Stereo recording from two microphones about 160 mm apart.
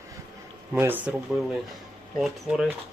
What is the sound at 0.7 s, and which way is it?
Speech, 10° right (ahead or behind).